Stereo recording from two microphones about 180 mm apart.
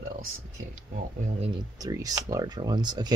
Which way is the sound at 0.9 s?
35° right (ahead or behind).